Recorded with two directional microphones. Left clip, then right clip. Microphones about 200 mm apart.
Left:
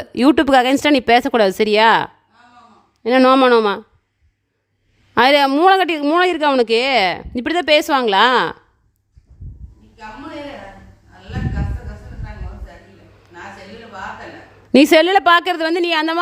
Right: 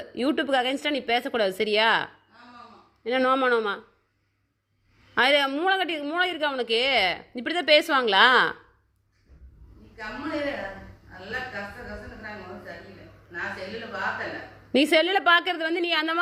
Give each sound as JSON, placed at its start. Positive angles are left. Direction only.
{"t": 0.0, "sound": "speech", "side_deg": 50}
{"t": 5.1, "sound": "speech", "side_deg": 40}
{"t": 14.7, "sound": "speech", "side_deg": 40}